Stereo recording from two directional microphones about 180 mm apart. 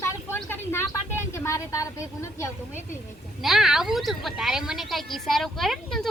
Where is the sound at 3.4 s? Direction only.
Centre (ahead or behind).